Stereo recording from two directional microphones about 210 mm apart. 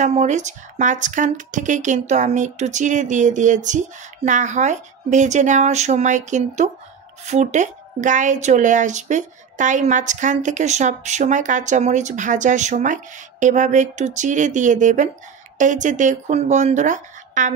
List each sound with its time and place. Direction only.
0.0 s a woman's voice: 35° right (ahead or behind)